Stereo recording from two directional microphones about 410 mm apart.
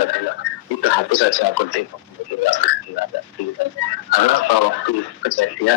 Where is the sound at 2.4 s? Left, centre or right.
Left.